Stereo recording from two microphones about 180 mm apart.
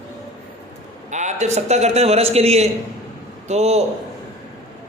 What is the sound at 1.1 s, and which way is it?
A woman's voice, 40° right (ahead or behind).